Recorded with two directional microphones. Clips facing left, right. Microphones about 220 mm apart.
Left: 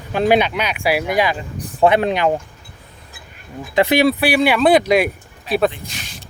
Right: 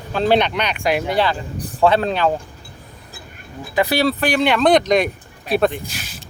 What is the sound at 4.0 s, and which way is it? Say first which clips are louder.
Speech: left 3 dB; 10° left (ahead or behind).